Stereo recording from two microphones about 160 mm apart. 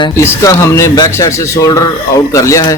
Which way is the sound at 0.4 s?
20° left (ahead or behind).